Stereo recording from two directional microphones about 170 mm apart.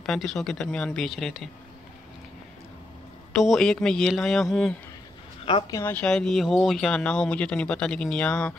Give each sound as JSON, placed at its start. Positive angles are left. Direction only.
{"t": 0.0, "sound": "speech", "side_deg": 0}
{"t": 3.3, "sound": "speech", "side_deg": 0}
{"t": 5.4, "sound": "speech", "side_deg": 30}
{"t": 5.8, "sound": "speech", "side_deg": 10}